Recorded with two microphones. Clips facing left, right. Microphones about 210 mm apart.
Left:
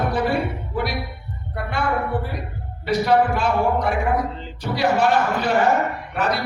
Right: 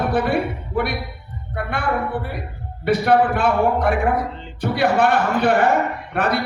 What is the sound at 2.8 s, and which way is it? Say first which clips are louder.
Speech: right 2 dB; 55° right (ahead or behind).